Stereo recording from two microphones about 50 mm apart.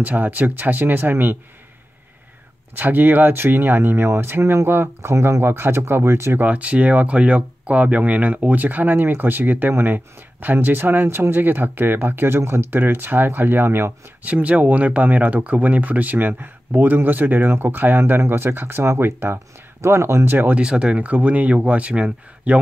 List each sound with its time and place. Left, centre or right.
0.0 s speech: right
2.7 s speech: right
5.1 s speech: right
5.4 s speech: right
6.4 s speech: right
14.2 s speech: right
20.2 s speech: right
20.5 s speech: centre